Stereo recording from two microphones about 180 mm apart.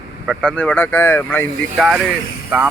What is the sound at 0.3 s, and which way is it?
Speech, 5° left (ahead or behind).